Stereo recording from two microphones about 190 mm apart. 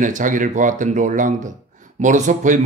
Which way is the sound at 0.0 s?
45° right (ahead or behind).